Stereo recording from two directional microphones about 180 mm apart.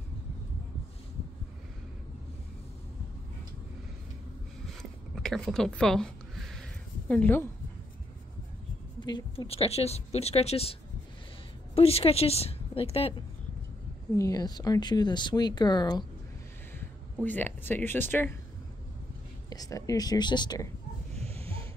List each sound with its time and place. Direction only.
5.1 s a sound: centre (ahead or behind)
7.1 s speech: 10° left (ahead or behind)
9.0 s a woman's voice: 25° left (ahead or behind)
14.1 s speech: 20° left (ahead or behind)
17.2 s speech: 10° left (ahead or behind)
19.5 s speech: 20° left (ahead or behind)
21.1 s a sound: 35° right (ahead or behind)